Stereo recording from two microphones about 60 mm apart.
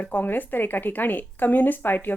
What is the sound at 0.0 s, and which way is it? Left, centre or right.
Speech, left.